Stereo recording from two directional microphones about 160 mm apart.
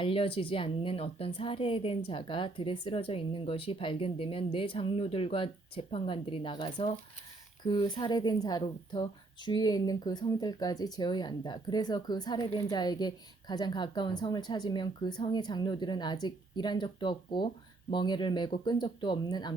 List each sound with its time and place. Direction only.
0.0 s a woman's voice: 35° left (ahead or behind)